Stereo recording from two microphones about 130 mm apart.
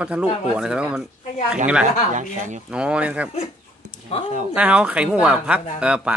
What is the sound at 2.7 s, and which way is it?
Speech, 10° right (ahead or behind).